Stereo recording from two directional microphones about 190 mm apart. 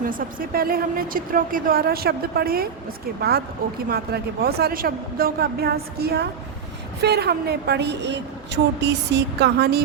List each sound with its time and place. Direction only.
0.0 s speech: 45° right (ahead or behind)